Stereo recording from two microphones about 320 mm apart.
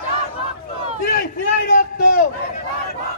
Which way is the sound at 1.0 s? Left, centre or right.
Left.